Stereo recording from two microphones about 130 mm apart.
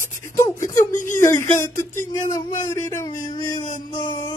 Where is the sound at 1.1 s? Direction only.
20° left (ahead or behind).